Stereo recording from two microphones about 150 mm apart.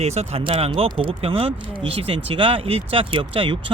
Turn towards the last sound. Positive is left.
turn(degrees=-35)  # may be behind; listen again after turning